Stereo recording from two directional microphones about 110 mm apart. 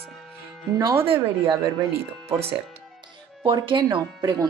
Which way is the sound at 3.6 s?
45° right (ahead or behind).